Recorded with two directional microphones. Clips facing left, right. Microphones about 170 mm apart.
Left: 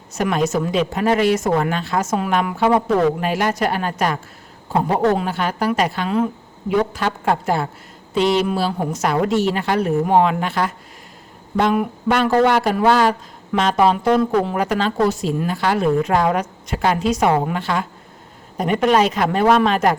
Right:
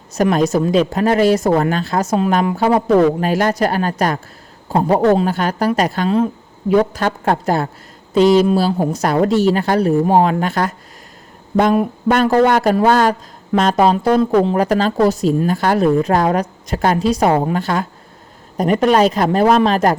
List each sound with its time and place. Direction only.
0.2 s a woman's voice: 40° right (ahead or behind)
12.1 s a woman's voice: 45° right (ahead or behind)